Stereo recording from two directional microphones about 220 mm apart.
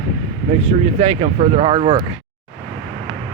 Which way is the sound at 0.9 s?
30° right (ahead or behind).